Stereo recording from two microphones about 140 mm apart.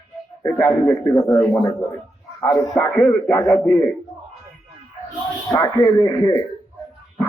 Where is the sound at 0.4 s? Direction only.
15° left (ahead or behind).